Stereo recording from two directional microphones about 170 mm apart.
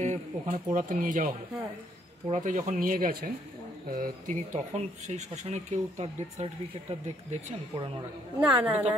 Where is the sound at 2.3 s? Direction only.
50° right (ahead or behind).